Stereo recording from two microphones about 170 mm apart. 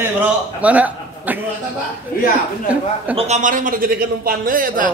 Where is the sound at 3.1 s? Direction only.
40° right (ahead or behind).